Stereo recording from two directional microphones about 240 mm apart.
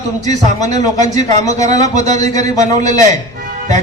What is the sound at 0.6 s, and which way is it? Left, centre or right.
A man's voice, right.